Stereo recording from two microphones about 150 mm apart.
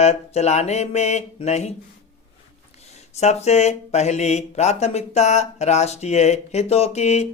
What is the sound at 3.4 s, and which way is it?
Speech, 45° left (ahead or behind).